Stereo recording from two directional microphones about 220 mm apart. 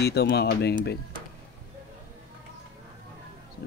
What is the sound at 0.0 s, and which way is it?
Speech, 45° left (ahead or behind).